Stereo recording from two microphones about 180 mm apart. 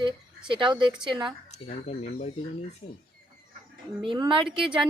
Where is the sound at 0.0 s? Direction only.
25° right (ahead or behind).